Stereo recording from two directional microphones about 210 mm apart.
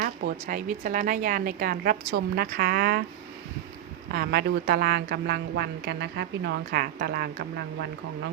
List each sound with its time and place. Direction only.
0.0 s a woman's voice: 40° right (ahead or behind)
4.1 s a woman's voice: 50° right (ahead or behind)